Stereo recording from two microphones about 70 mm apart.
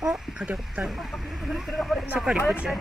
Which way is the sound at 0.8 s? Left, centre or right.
Centre.